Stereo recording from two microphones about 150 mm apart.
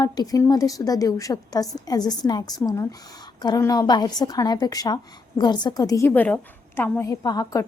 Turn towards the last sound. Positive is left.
turn(degrees=25)  # may be behind; listen again after turning